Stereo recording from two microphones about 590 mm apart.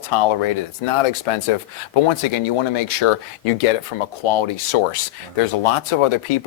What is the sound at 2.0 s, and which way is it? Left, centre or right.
Speech, left.